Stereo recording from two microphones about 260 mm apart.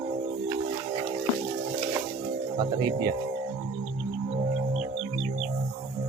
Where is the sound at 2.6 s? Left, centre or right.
Centre.